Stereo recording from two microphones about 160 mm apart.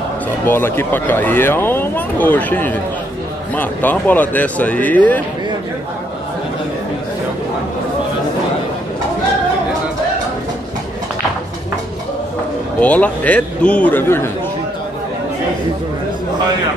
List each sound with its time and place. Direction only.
0.5 s speech: 15° left (ahead or behind)
12.8 s speech: 10° left (ahead or behind)